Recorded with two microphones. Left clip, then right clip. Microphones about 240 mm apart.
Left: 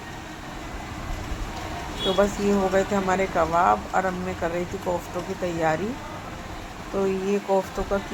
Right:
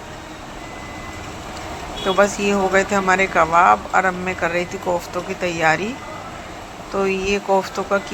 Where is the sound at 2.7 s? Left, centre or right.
Centre.